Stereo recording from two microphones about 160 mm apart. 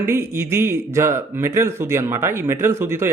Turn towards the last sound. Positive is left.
turn(degrees=-15)  # may be behind; listen again after turning